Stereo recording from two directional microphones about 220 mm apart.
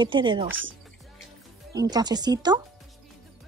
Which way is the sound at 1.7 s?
15° right (ahead or behind).